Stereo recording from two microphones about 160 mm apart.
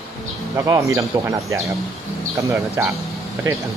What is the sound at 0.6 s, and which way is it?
Speech, 20° right (ahead or behind).